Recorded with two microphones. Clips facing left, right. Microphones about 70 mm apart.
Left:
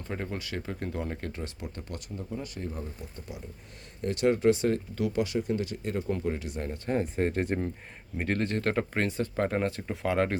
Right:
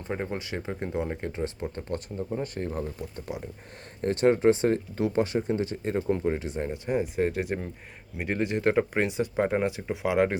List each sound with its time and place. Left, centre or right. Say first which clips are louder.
0.1 s speech: right 3 dB; right
4.0 s speech: right 3 dB; right
6.8 s speech: right 1 dB; centre